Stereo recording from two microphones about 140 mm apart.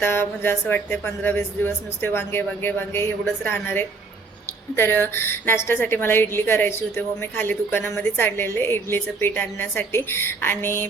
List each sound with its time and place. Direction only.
0.0 s a woman's voice: 15° left (ahead or behind)